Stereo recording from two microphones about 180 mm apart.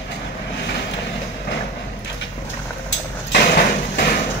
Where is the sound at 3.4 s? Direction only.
55° left (ahead or behind).